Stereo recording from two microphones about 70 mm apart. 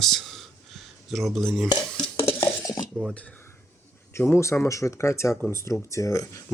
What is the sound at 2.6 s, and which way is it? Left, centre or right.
Cutlery, left.